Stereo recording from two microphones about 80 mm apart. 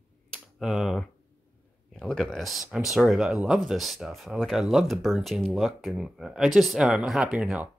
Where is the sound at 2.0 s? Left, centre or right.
Centre.